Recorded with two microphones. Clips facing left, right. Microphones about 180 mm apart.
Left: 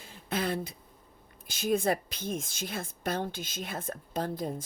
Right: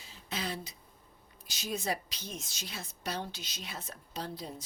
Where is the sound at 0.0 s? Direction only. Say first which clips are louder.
Left 7 dB; 55° left (ahead or behind).